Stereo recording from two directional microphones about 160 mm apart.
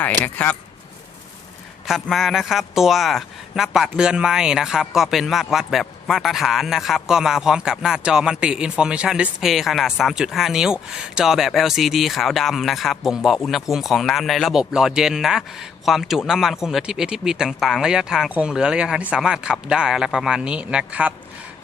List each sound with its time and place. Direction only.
0.0 s speech: 10° left (ahead or behind)
1.9 s a man's voice: centre (ahead or behind)